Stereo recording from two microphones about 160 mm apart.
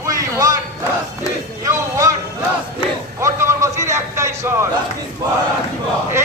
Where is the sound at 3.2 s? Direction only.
20° right (ahead or behind).